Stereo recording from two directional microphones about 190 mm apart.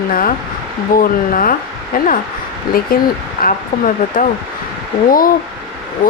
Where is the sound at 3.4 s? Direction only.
45° left (ahead or behind).